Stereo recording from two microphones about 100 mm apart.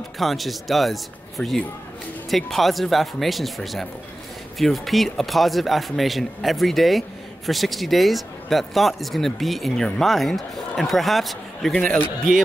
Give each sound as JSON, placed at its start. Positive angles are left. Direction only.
{"t": 0.2, "sound": "a man's voice", "side_deg": 0}
{"t": 11.7, "sound": "a man's voice", "side_deg": 10}